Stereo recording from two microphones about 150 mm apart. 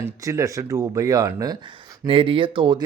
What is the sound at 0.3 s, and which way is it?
Speech, 20° right (ahead or behind).